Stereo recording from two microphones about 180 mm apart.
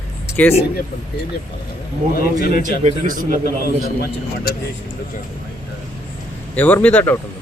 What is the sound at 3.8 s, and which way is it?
Speech, 55° left (ahead or behind).